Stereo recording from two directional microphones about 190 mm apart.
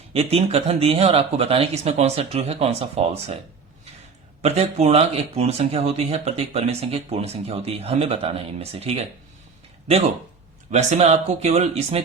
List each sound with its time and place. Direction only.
0.1 s speech: 30° right (ahead or behind)
4.4 s speech: 35° right (ahead or behind)
10.7 s speech: 35° right (ahead or behind)